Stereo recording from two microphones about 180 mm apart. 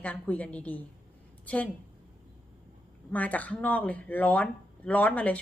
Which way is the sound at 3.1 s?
10° left (ahead or behind).